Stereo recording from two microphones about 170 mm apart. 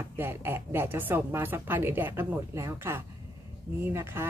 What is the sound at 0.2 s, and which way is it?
A woman's voice, 15° right (ahead or behind).